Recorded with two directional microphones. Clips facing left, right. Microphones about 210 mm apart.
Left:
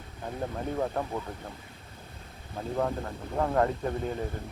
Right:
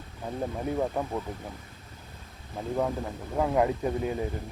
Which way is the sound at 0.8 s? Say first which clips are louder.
Even; 5° right (ahead or behind).